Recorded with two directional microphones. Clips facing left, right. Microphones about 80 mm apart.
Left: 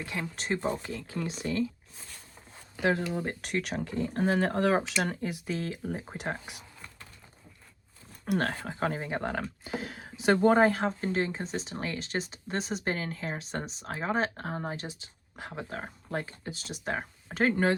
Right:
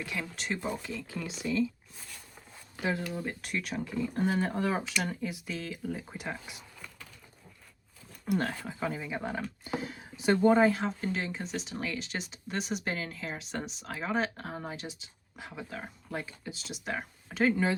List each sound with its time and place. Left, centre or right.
0.0 s speech: left
3.1 s speech: left
3.4 s speech: left
5.0 s speech: left
6.1 s speech: left
8.3 s speech: left
9.8 s speech: left
10.6 s speech: left
17.3 s speech: left